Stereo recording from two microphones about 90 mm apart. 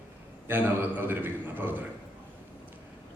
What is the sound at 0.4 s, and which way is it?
A man's voice, 25° right (ahead or behind).